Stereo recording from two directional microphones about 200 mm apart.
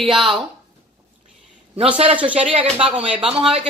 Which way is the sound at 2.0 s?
25° right (ahead or behind).